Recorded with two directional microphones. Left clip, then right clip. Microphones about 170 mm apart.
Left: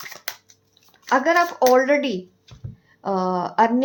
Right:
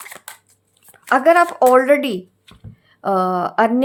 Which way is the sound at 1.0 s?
35° right (ahead or behind).